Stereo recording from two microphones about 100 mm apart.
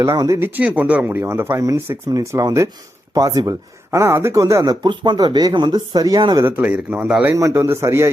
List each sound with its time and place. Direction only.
0.0 s speech: 30° right (ahead or behind)
6.4 s speech: 15° right (ahead or behind)
7.3 s speech: 30° right (ahead or behind)